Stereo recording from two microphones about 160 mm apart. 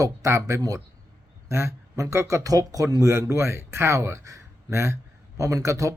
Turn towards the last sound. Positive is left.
turn(degrees=-20)  # may be behind; listen again after turning